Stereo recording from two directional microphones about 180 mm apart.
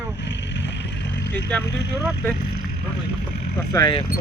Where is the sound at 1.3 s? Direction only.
10° left (ahead or behind).